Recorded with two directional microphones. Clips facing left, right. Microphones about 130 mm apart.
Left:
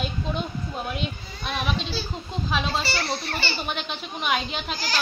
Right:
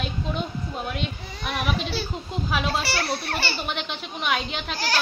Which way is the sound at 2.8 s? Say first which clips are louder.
Right 1 dB; 65° right (ahead or behind).